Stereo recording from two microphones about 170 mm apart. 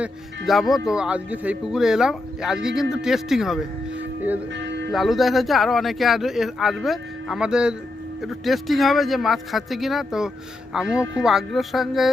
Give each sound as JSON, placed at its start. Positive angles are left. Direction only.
{"t": 0.0, "sound": "speech", "side_deg": 0}
{"t": 4.5, "sound": "music", "side_deg": -90}
{"t": 4.9, "sound": "speech", "side_deg": 0}